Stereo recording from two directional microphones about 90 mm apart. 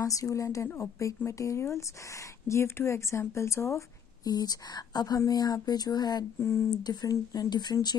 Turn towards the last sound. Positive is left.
turn(degrees=50)  # may be behind; listen again after turning